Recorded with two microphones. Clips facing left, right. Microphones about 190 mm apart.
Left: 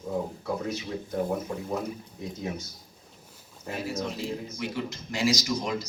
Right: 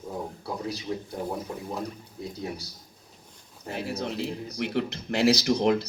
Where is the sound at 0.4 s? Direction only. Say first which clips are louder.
Left 2 dB; 35° right (ahead or behind).